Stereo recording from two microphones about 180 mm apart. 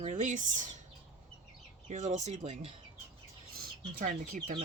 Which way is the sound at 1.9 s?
40° right (ahead or behind).